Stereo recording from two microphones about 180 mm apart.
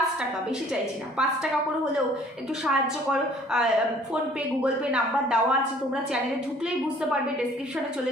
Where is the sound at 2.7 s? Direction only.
5° right (ahead or behind).